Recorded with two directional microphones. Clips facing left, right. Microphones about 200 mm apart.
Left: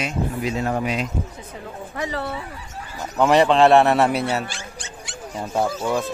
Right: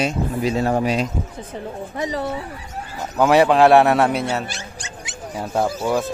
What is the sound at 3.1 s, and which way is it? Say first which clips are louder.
A man's voice: right 1 dB; 5° right (ahead or behind).